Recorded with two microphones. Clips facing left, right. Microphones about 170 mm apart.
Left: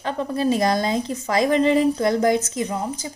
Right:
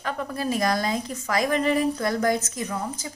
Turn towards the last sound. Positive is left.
turn(degrees=20)  # may be behind; listen again after turning